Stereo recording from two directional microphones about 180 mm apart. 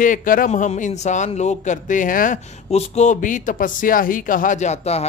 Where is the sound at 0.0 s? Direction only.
50° left (ahead or behind).